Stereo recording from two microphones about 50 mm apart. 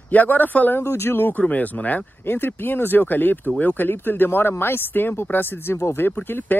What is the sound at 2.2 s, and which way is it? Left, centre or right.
Speech, left.